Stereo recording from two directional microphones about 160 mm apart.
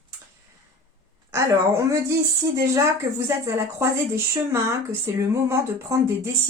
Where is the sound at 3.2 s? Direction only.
20° right (ahead or behind).